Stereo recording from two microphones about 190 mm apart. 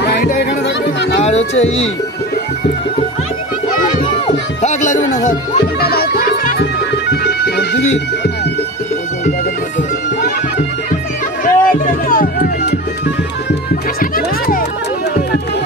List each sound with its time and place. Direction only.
0.4 s music: 65° left (ahead or behind)
1.2 s speech: 35° left (ahead or behind)
4.6 s music: 40° left (ahead or behind)
5.8 s music: 55° left (ahead or behind)
11.4 s music: 45° left (ahead or behind)